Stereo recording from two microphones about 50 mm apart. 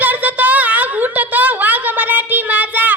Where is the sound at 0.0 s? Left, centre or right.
Right.